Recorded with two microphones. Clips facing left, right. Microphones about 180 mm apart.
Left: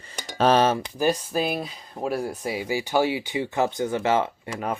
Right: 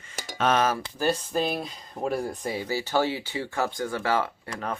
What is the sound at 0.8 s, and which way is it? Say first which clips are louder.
Speech: left 3 dB; 15° left (ahead or behind).